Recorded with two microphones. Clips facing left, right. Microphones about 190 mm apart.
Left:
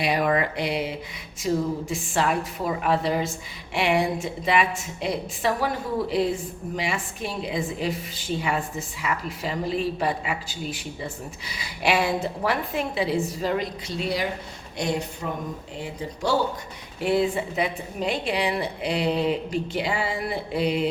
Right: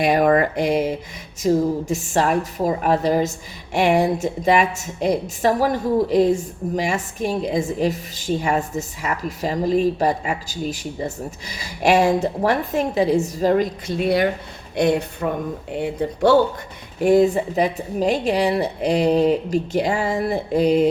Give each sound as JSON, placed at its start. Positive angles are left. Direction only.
{"t": 0.0, "sound": "a woman's voice", "side_deg": -45}
{"t": 17.0, "sound": "a woman's voice", "side_deg": -45}